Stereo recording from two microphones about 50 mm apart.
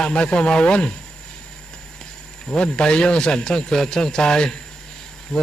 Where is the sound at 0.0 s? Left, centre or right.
Centre.